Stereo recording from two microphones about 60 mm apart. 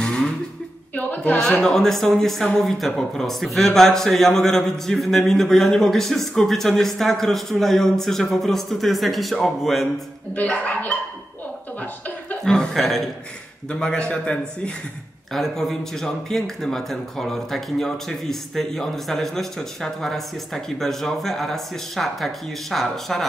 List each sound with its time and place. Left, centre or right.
0.0 s a sound: centre
0.9 s speech: left
1.6 s speech: centre
10.3 s speech: left
12.4 s speech: centre
13.7 s a man's voice: centre
15.3 s speech: centre